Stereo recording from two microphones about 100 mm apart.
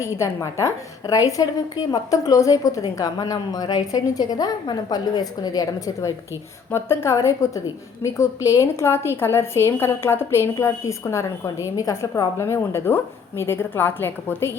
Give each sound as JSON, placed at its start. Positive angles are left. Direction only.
{"t": 0.0, "sound": "a woman's voice", "side_deg": 30}